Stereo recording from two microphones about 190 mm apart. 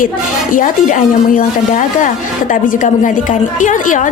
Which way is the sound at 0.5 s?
45° left (ahead or behind).